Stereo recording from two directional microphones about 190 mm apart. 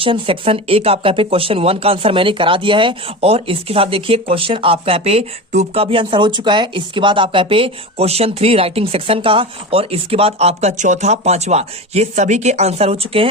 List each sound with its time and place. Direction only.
0.0 s speech: 30° right (ahead or behind)